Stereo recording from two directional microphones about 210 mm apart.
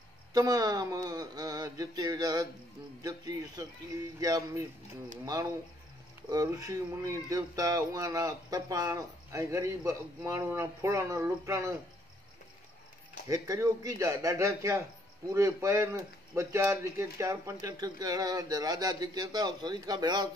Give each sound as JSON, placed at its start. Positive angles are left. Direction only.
{"t": 0.3, "sound": "speech", "side_deg": -20}
{"t": 13.3, "sound": "speech", "side_deg": -15}